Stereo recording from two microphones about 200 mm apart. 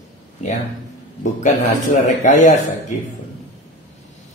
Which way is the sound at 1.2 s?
40° left (ahead or behind).